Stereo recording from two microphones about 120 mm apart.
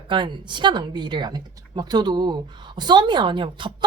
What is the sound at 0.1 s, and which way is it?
Speech, 40° right (ahead or behind).